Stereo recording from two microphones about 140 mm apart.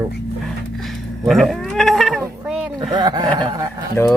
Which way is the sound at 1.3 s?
Centre (ahead or behind).